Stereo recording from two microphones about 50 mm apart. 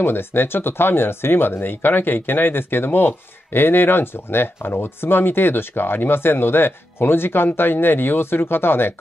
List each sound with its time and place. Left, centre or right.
0.0 s speech: left